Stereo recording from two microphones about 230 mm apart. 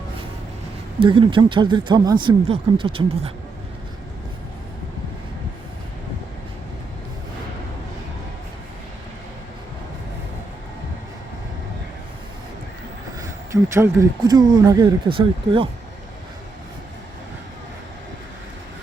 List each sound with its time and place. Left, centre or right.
0.9 s speech: right
13.1 s speech: centre